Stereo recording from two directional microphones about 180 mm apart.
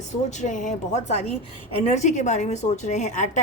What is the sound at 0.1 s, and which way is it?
A woman's voice, 40° left (ahead or behind).